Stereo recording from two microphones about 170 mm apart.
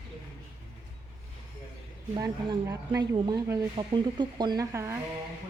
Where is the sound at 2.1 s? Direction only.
20° right (ahead or behind).